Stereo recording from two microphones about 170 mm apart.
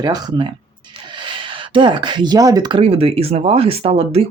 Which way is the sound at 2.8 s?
35° right (ahead or behind).